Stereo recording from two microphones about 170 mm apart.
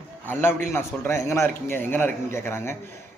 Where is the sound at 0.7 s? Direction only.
15° left (ahead or behind).